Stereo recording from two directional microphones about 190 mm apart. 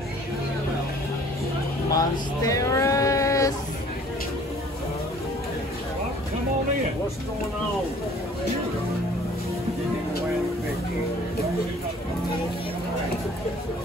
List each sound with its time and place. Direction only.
2.0 s speech: 20° left (ahead or behind)